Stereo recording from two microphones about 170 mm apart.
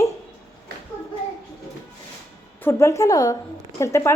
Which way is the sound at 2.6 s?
15° left (ahead or behind).